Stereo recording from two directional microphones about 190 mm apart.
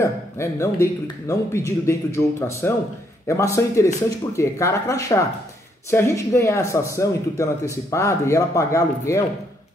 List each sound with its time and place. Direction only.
0.0 s a man's voice: 15° left (ahead or behind)